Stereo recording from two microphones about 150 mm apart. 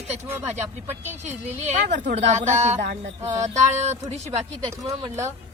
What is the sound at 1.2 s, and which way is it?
A woman's voice, 50° right (ahead or behind).